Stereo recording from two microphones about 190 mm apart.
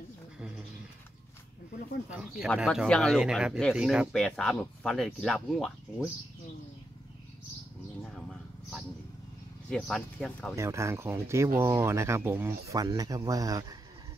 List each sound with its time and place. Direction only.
2.0 s speech: 5° right (ahead or behind)
8.0 s a sound: 5° right (ahead or behind)
9.7 s speech: centre (ahead or behind)
10.5 s speech: 15° right (ahead or behind)